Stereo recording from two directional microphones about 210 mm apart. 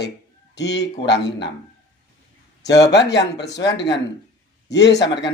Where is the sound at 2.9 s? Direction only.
55° left (ahead or behind).